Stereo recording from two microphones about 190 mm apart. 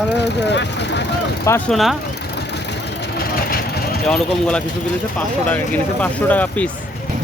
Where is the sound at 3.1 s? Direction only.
55° left (ahead or behind).